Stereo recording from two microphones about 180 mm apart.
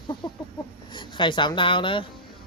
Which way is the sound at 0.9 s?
25° left (ahead or behind).